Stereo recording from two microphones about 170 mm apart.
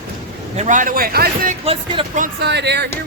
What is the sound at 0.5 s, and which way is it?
A man's voice, 45° right (ahead or behind).